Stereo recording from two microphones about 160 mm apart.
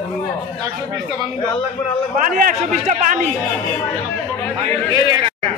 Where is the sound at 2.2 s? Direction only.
55° right (ahead or behind).